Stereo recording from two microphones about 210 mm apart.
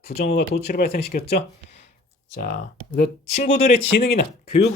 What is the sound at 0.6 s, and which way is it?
Speech, 45° left (ahead or behind).